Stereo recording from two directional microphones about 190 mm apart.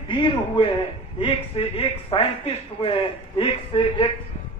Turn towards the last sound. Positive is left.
turn(degrees=25)  # may be behind; listen again after turning